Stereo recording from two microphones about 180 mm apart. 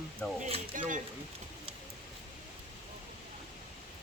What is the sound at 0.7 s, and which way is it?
Speech, 45° right (ahead or behind).